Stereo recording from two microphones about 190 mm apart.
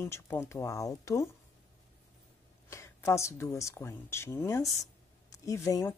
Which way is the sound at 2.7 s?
15° left (ahead or behind).